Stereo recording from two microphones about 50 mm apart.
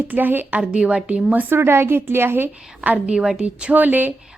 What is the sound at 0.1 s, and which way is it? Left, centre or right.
Speech, right.